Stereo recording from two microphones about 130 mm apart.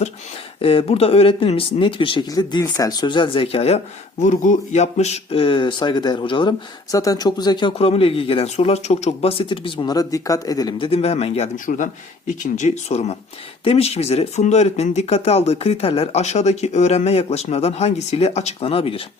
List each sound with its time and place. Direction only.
0.6 s speech: 45° left (ahead or behind)
4.2 s speech: 75° left (ahead or behind); by 6.5 s 40° left (ahead or behind)
6.9 s speech: 25° left (ahead or behind)
7.8 s speech: 50° left (ahead or behind)
9.9 s speech: 25° left (ahead or behind)
10.8 s speech: 50° left (ahead or behind)
11.5 s speech: 90° left
12.3 s speech: 70° left (ahead or behind); by 19.0 s 45° left (ahead or behind)